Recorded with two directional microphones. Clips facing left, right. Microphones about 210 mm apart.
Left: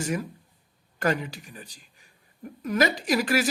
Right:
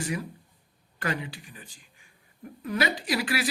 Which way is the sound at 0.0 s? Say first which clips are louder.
Left 3 dB; 45° left (ahead or behind).